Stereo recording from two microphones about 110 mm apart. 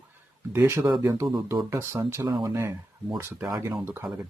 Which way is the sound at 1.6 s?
25° right (ahead or behind).